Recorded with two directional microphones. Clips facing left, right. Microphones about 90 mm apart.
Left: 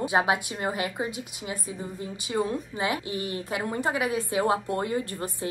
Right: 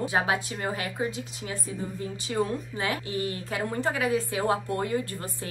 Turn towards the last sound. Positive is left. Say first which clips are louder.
# left 3 dB
turn(degrees=20)  # may be behind; listen again after turning